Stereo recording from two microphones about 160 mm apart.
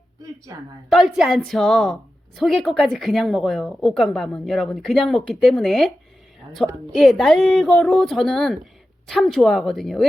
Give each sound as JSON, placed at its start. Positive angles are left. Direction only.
{"t": 0.5, "sound": "a woman's voice", "side_deg": -20}
{"t": 0.9, "sound": "a woman's voice", "side_deg": 0}